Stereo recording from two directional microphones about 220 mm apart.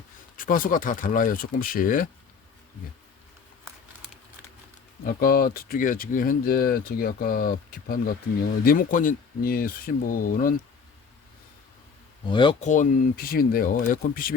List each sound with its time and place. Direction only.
0.3 s speech: 40° left (ahead or behind)
5.2 s speech: 40° left (ahead or behind)
12.3 s speech: 20° left (ahead or behind); by 14.3 s 40° left (ahead or behind)